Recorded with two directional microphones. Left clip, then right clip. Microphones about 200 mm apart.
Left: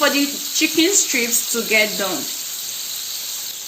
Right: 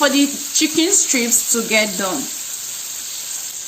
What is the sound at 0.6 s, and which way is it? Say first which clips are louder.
Speech: even; 60° right (ahead or behind).